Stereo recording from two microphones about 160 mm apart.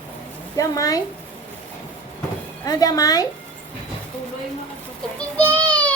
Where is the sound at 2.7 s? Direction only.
25° left (ahead or behind).